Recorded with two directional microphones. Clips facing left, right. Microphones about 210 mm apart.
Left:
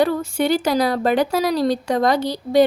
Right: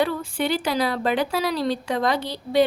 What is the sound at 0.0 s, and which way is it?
A woman's voice, 45° left (ahead or behind).